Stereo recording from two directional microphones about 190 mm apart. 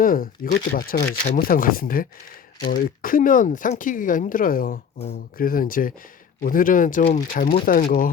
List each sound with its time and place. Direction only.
0.0 s speech: 50° left (ahead or behind)